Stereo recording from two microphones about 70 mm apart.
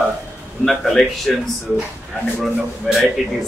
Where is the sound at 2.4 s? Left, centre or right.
Centre.